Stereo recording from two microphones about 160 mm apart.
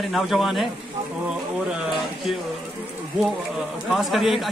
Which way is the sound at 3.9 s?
Centre (ahead or behind).